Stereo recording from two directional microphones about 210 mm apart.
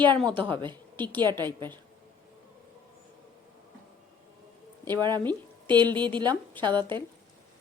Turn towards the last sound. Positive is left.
turn(degrees=-20)  # may be behind; listen again after turning